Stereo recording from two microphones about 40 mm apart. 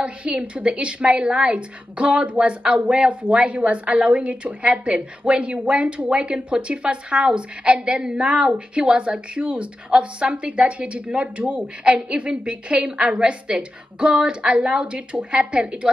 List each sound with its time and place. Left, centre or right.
0.0 s a woman's voice: right
11.8 s a woman's voice: right